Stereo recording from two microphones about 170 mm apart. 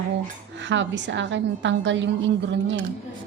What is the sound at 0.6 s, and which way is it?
A woman's voice, 90° right.